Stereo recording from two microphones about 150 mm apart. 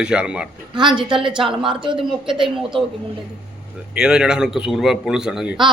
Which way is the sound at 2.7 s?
35° right (ahead or behind).